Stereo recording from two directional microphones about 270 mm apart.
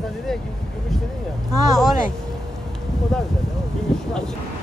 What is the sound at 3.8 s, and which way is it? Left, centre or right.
Speech, centre.